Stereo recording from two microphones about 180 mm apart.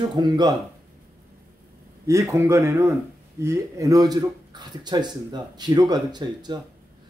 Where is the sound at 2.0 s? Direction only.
15° right (ahead or behind).